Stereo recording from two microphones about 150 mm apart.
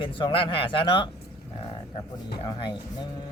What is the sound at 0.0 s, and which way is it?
Speech, 35° left (ahead or behind).